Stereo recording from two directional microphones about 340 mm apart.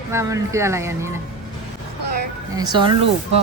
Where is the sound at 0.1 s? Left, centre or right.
Centre.